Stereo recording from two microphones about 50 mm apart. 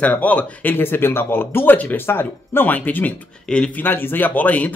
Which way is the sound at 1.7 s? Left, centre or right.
Left.